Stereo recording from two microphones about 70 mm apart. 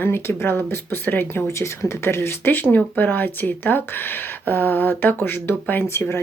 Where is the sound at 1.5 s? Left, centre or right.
Left.